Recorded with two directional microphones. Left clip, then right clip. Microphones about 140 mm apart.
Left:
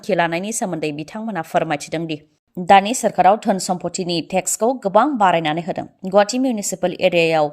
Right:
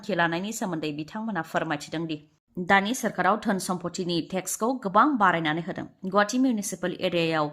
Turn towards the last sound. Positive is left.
turn(degrees=35)  # may be behind; listen again after turning